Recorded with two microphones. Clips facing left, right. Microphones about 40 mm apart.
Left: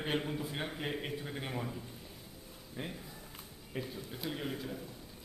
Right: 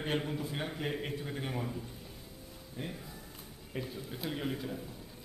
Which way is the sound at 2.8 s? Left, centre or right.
Centre.